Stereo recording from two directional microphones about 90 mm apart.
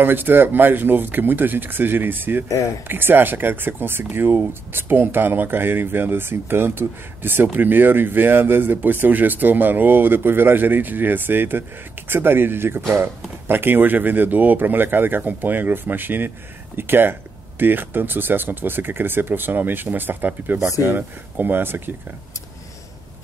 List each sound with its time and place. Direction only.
0.0 s speech: 20° right (ahead or behind)
2.4 s speech: 35° left (ahead or behind)
2.9 s speech: 25° right (ahead or behind)